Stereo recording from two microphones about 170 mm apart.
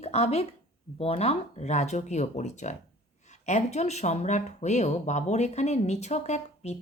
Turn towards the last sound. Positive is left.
turn(degrees=40)  # may be behind; listen again after turning